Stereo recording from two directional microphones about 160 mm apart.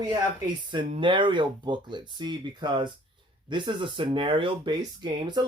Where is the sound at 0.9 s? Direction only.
30° right (ahead or behind).